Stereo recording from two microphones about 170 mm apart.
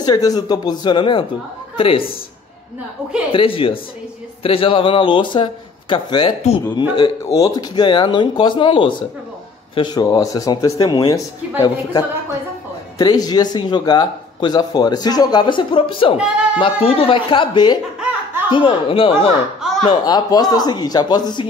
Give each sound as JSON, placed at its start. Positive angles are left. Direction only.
{"t": 0.0, "sound": "speech", "side_deg": 20}
{"t": 3.3, "sound": "speech", "side_deg": 30}
{"t": 19.6, "sound": "a sound", "side_deg": 0}
{"t": 19.9, "sound": "speech", "side_deg": 25}